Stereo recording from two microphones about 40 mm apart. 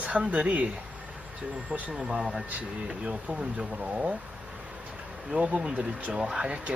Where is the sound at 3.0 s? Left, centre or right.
Right.